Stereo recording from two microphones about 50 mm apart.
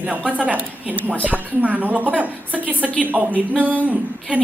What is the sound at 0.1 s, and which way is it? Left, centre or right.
A woman's voice, right.